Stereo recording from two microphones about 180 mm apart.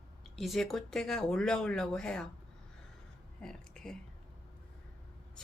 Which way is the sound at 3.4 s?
5° left (ahead or behind).